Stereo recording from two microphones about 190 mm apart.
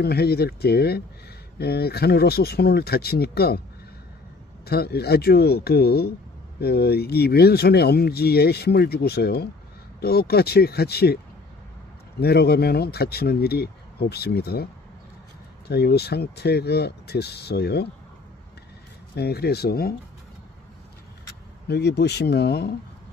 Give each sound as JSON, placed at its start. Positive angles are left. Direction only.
{"t": 0.0, "sound": "speech", "side_deg": 55}
{"t": 4.6, "sound": "speech", "side_deg": 55}
{"t": 12.2, "sound": "speech", "side_deg": 55}
{"t": 15.7, "sound": "speech", "side_deg": 55}
{"t": 19.1, "sound": "speech", "side_deg": 60}
{"t": 21.6, "sound": "speech", "side_deg": 60}